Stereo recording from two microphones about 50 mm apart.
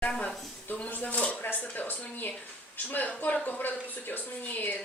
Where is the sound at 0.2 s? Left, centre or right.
Left.